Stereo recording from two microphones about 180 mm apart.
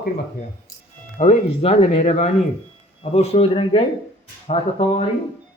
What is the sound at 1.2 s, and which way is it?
A man's voice, 40° left (ahead or behind).